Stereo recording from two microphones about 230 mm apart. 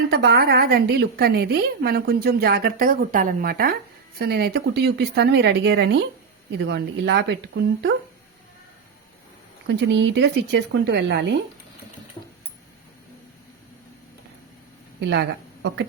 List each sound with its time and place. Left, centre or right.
0.1 s a woman's voice: right
9.6 s a woman's voice: right
15.0 s speech: right